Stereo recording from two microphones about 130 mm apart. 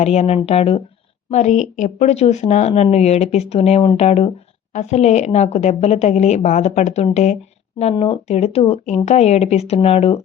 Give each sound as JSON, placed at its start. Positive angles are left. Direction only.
{"t": 0.0, "sound": "speech", "side_deg": 55}
{"t": 1.3, "sound": "speech", "side_deg": 65}